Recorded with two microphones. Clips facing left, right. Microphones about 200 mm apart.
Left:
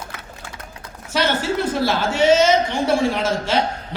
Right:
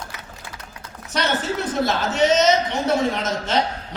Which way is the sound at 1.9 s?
10° left (ahead or behind).